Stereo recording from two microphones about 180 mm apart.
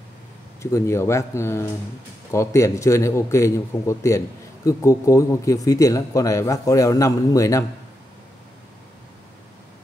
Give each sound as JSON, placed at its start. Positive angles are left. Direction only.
{"t": 0.6, "sound": "a man's voice", "side_deg": 15}